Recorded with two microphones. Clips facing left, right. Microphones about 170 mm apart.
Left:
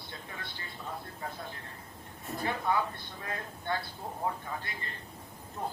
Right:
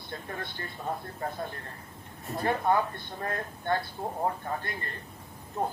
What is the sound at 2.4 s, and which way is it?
Speech, 50° right (ahead or behind).